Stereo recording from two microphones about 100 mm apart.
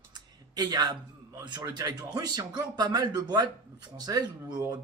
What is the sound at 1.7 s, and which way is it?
A man's voice, 45° right (ahead or behind).